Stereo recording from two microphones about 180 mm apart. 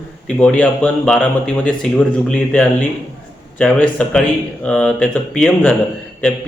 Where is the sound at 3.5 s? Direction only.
5° left (ahead or behind).